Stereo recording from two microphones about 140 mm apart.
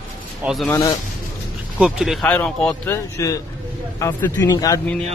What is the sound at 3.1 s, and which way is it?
Speech, 25° left (ahead or behind).